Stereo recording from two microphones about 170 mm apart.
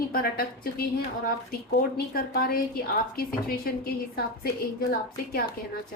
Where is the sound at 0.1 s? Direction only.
60° left (ahead or behind).